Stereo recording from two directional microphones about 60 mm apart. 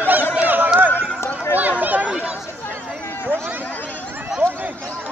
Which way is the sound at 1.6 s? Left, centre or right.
Right.